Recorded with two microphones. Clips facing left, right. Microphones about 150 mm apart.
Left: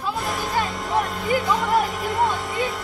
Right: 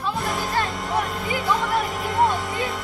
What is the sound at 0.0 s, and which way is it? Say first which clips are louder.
Music: even; centre (ahead or behind).